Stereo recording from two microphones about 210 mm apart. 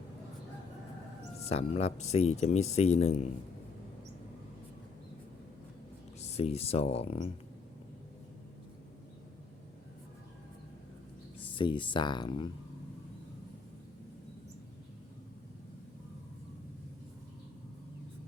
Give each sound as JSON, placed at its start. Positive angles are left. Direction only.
{"t": 1.5, "sound": "speech", "side_deg": 30}
{"t": 6.1, "sound": "speech", "side_deg": 30}
{"t": 11.5, "sound": "speech", "side_deg": 25}